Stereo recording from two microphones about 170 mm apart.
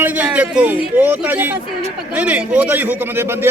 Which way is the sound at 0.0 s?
10° right (ahead or behind).